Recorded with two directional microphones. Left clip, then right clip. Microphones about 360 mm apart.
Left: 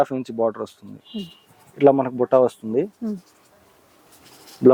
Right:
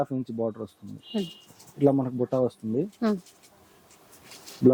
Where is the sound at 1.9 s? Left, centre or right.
Centre.